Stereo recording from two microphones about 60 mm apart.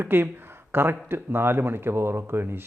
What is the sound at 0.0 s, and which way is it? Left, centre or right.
Speech, right.